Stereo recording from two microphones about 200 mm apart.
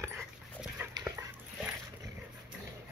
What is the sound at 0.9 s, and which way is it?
Dog, 15° right (ahead or behind).